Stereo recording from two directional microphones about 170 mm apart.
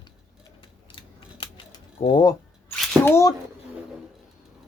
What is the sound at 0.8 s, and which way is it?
Scissors, 30° left (ahead or behind).